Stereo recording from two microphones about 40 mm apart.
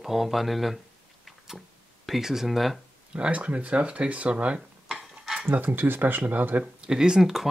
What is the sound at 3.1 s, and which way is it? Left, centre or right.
Speech, right.